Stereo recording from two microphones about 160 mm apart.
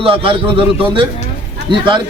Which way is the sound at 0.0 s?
35° right (ahead or behind).